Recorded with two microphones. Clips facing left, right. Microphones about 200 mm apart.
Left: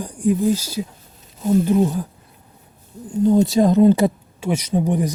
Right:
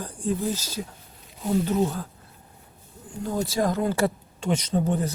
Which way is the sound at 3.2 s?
20° left (ahead or behind).